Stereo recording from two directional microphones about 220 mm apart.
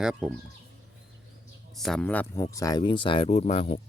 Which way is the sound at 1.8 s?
Centre (ahead or behind).